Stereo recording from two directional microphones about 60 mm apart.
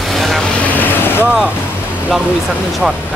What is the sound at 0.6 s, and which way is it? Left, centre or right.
Speech, left.